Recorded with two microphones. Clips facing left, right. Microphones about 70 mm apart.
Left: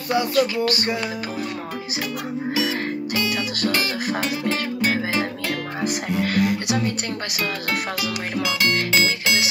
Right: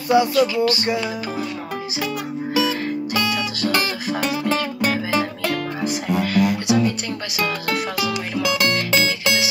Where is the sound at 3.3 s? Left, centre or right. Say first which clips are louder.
Right 2 dB; left.